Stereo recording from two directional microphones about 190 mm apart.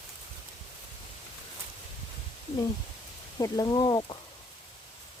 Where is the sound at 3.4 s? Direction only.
20° left (ahead or behind).